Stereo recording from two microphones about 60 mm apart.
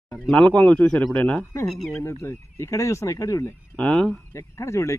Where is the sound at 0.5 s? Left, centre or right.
Centre.